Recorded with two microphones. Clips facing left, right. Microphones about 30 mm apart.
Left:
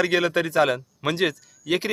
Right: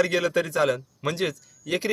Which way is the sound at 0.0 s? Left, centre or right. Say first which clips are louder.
Left 2 dB; left.